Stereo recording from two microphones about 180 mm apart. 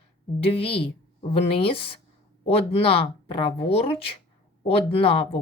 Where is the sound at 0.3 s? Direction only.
30° left (ahead or behind).